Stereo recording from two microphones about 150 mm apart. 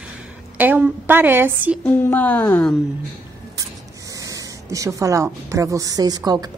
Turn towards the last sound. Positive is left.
turn(degrees=-25)  # may be behind; listen again after turning